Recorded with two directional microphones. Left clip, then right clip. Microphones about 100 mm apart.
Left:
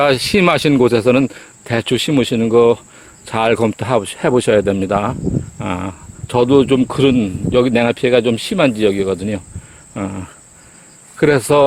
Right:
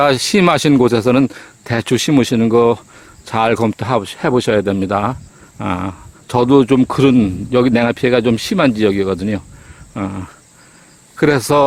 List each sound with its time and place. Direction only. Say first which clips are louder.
0.0 s speech: even; 30° right (ahead or behind)
1.6 s speech: even; 50° right (ahead or behind)
3.2 s speech: even; 25° right (ahead or behind)
5.5 s insect: right 2 dB; 30° right (ahead or behind)
6.3 s speech: even; 50° right (ahead or behind)
9.9 s speech: right 1 dB; 20° right (ahead or behind)
11.2 s speech: left 1 dB; 30° right (ahead or behind)